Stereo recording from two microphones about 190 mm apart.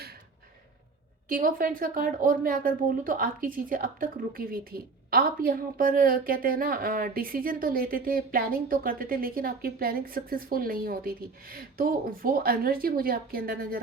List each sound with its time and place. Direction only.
1.3 s a woman's voice: 45° right (ahead or behind)